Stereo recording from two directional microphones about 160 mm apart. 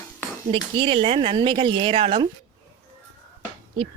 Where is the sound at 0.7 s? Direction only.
35° right (ahead or behind).